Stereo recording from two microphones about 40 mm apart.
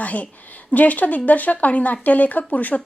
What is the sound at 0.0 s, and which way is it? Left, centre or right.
A woman's voice, left.